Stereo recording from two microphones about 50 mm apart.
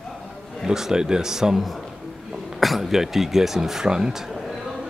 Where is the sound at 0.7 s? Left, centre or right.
Centre.